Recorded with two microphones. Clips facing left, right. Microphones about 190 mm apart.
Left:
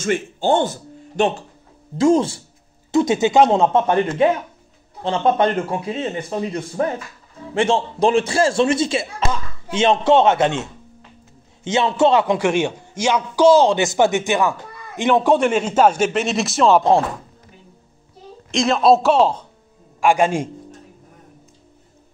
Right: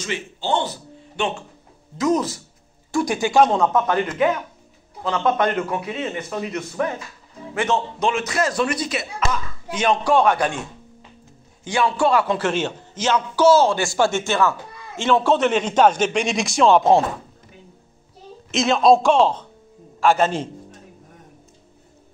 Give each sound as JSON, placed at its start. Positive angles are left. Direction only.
{"t": 0.0, "sound": "speech", "side_deg": 50}
{"t": 2.0, "sound": "a man's voice", "side_deg": 30}
{"t": 18.5, "sound": "a man's voice", "side_deg": 0}